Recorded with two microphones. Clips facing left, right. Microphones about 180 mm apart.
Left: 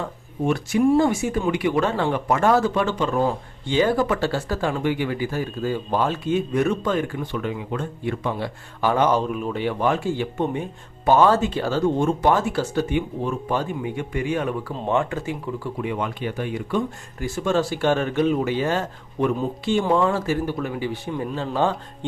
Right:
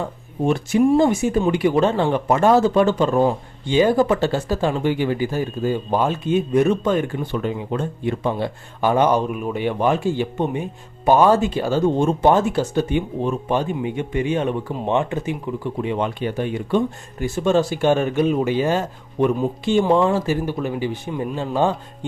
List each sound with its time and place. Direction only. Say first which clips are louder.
0.4 s speech: right 2 dB; 25° right (ahead or behind)
2.6 s speech: right 6 dB; 35° right (ahead or behind)
3.2 s speech: right 4 dB; 20° right (ahead or behind)
7.3 s speech: right 4 dB; 30° right (ahead or behind)
8.8 s speech: right 2 dB; 15° right (ahead or behind)
11.9 s speech: right 3 dB; 25° right (ahead or behind)